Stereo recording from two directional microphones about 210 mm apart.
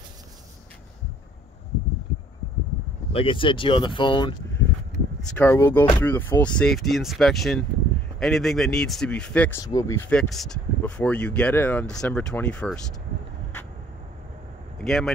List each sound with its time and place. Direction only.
3.1 s speech: 25° left (ahead or behind)
5.4 s speech: 10° left (ahead or behind)
14.8 s speech: centre (ahead or behind)